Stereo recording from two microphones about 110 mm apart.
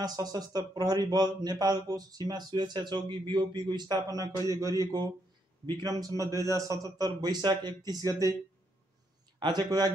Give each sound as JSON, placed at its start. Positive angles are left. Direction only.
{"t": 0.0, "sound": "speech", "side_deg": -35}
{"t": 9.4, "sound": "speech", "side_deg": -40}